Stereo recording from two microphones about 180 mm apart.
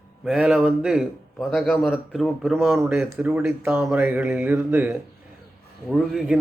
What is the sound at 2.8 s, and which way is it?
A man's voice, 10° right (ahead or behind).